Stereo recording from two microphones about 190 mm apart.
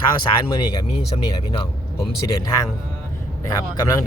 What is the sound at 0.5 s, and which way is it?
Speech, 25° left (ahead or behind).